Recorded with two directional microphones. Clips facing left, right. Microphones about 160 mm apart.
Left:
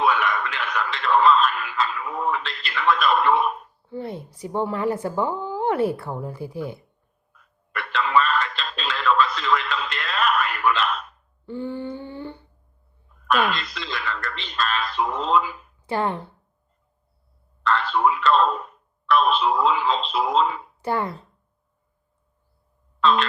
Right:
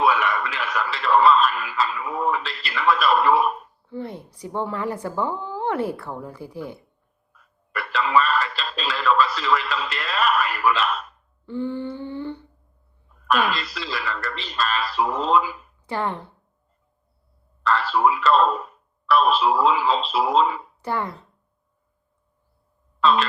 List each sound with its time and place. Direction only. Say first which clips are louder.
0.0 s a man's voice: right 1 dB; centre (ahead or behind)
4.4 s a woman's voice: left 2 dB; 15° left (ahead or behind)
6.2 s a woman's voice: left 3 dB; 25° left (ahead or behind)
7.3 s a sound: right 1 dB; 5° right (ahead or behind)
7.9 s radio: right 1 dB; centre (ahead or behind)
12.1 s humming: right 4 dB; 45° left (ahead or behind)
13.2 s a man's voice: even; centre (ahead or behind)
17.6 s a man's voice: right 1 dB; 5° right (ahead or behind)
23.0 s speech: right 1 dB; centre (ahead or behind)